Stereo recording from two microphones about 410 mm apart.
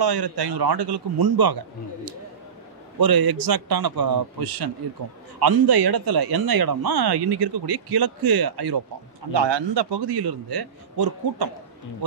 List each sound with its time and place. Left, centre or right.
0.0 s speech: right
3.0 s speech: right
9.3 s a man's voice: right